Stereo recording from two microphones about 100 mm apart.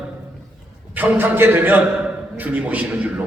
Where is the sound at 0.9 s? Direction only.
20° right (ahead or behind).